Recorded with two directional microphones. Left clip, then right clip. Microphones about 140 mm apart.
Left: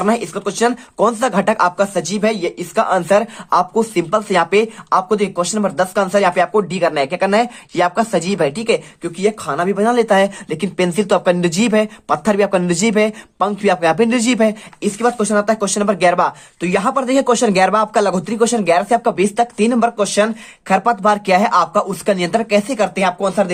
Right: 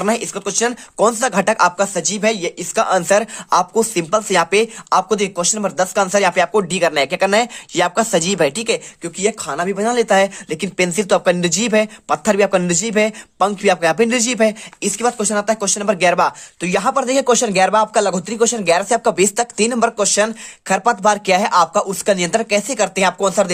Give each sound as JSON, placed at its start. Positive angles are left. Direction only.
{"t": 0.0, "sound": "speech", "side_deg": -25}